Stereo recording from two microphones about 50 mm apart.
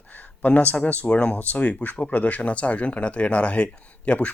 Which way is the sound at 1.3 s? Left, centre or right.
Left.